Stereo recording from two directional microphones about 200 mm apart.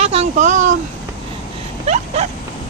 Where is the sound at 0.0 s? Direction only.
30° right (ahead or behind).